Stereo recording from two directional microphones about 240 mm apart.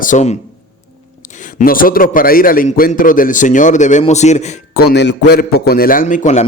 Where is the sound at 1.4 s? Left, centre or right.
Left.